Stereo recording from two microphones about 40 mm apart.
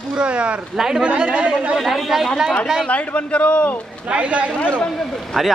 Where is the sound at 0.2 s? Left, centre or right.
Right.